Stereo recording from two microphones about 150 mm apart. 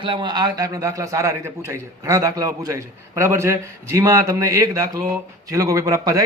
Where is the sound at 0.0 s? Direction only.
30° right (ahead or behind).